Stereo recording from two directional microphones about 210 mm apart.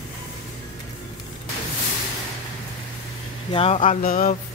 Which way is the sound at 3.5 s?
25° left (ahead or behind).